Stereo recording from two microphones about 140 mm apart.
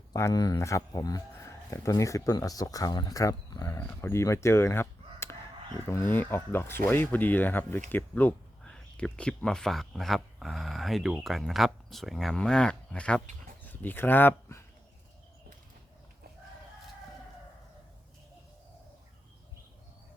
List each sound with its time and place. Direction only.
0.1 s speech: 20° left (ahead or behind)